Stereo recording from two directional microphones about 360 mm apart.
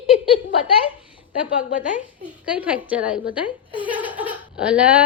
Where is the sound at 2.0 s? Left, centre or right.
Centre.